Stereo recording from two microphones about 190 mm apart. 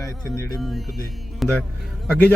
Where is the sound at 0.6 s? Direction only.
Centre (ahead or behind).